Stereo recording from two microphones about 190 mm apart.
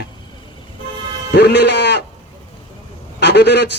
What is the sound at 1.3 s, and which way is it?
Speech, 60° left (ahead or behind).